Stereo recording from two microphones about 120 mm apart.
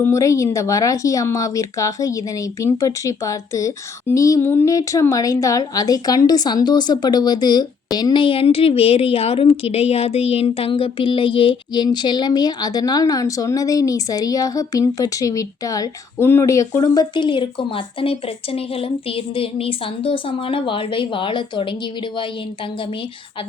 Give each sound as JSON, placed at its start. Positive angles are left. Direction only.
{"t": 0.0, "sound": "speech", "side_deg": 25}